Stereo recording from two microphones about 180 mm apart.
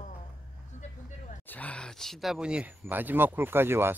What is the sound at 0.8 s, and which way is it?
Vehicle, 45° left (ahead or behind).